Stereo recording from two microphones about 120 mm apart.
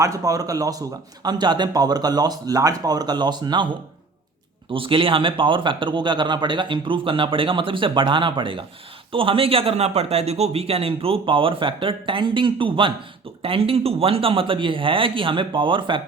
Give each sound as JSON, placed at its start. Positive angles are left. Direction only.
{"t": 0.0, "sound": "a man's voice", "side_deg": -30}
{"t": 4.7, "sound": "speech", "side_deg": -45}